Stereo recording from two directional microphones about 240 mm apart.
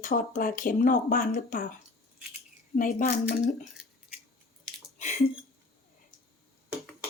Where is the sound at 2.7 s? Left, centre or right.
Left.